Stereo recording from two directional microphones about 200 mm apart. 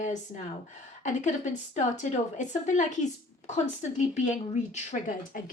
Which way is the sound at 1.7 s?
35° left (ahead or behind).